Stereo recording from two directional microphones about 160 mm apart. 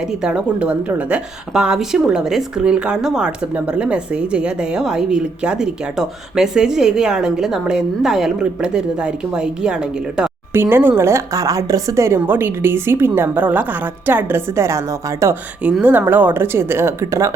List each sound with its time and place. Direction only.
0.1 s a woman's voice: 5° right (ahead or behind)